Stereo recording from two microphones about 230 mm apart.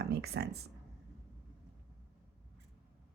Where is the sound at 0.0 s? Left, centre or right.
Right.